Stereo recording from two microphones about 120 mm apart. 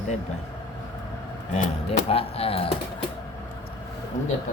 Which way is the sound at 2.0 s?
55° left (ahead or behind).